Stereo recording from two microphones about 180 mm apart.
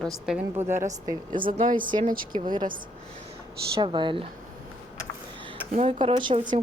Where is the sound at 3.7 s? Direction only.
25° right (ahead or behind).